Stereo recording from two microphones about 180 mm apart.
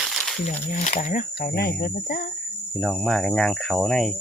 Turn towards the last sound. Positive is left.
turn(degrees=0)  # may be behind; listen again after turning